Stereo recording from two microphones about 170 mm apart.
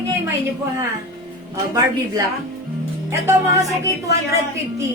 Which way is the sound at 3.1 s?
15° right (ahead or behind).